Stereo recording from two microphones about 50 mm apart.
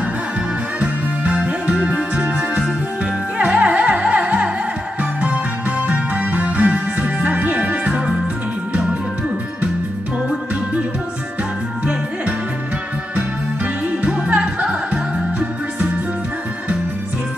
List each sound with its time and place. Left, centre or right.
0.7 s music: right
14.0 s music: right